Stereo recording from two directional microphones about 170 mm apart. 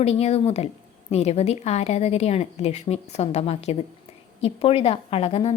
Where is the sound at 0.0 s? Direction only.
35° left (ahead or behind).